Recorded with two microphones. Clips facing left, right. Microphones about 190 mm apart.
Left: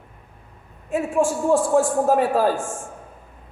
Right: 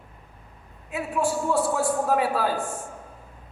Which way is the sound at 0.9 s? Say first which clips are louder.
Left 5 dB; 45° left (ahead or behind).